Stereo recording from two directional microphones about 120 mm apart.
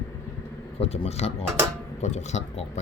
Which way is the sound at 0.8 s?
60° left (ahead or behind).